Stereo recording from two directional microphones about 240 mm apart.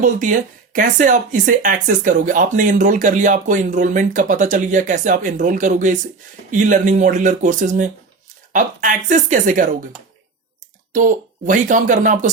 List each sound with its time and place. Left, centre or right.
0.0 s speech: right
10.9 s speech: right